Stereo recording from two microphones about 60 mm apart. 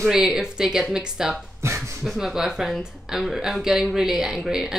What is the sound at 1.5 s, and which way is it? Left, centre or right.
Speech, right.